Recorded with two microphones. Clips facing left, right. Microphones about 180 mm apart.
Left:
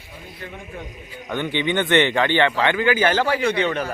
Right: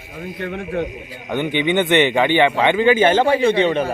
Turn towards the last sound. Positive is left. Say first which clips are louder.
# right 5 dB
turn(degrees=-25)  # may be behind; listen again after turning